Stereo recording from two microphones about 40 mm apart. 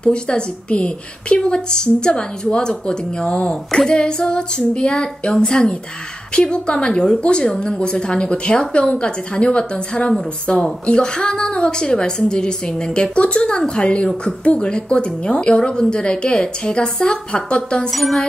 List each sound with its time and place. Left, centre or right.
0.0 s a woman's voice: left
17.9 s music: centre